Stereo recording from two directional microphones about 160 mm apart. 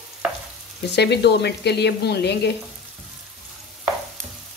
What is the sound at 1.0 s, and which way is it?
Speech, 90° left.